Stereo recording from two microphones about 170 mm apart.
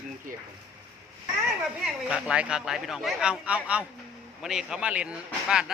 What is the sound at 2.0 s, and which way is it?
Speech, 5° right (ahead or behind).